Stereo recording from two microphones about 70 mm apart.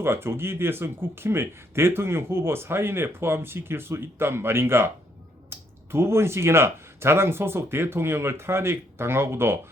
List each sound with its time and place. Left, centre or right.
0.0 s speech: right